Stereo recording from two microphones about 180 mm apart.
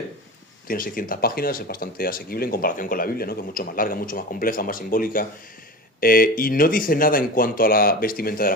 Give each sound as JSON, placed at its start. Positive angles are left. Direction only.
{"t": 0.7, "sound": "speech", "side_deg": 50}